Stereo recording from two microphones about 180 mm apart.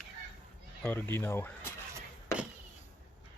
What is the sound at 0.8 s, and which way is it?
Speech, 10° left (ahead or behind).